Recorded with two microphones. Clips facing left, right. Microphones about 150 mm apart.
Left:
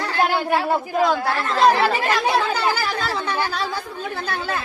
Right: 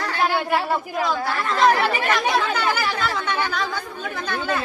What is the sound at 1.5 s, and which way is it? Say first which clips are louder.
Speech: left 2 dB; 30° left (ahead or behind).